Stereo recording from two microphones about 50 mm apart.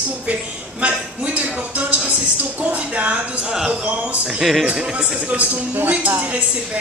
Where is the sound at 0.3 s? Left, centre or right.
Right.